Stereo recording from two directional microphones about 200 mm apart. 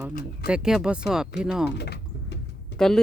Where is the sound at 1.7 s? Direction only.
55° left (ahead or behind).